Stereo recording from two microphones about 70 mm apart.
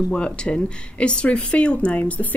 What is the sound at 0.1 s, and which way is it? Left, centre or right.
Speech, centre.